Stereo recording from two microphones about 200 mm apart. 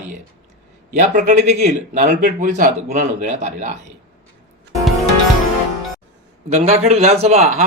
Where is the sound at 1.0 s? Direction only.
35° right (ahead or behind).